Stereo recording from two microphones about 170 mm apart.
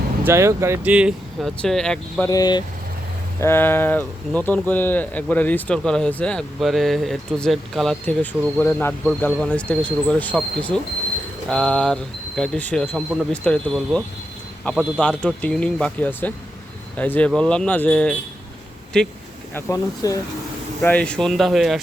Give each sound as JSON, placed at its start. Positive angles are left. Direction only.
{"t": 0.3, "sound": "speech", "side_deg": -15}
{"t": 2.2, "sound": "speech", "side_deg": 20}
{"t": 3.4, "sound": "speech", "side_deg": 15}
{"t": 19.5, "sound": "speech", "side_deg": 15}
{"t": 20.8, "sound": "speech", "side_deg": 5}